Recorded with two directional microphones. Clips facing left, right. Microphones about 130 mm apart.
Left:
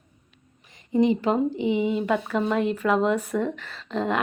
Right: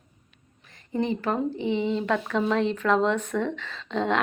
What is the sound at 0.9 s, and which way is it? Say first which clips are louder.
A woman's voice: left 5 dB; 15° left (ahead or behind).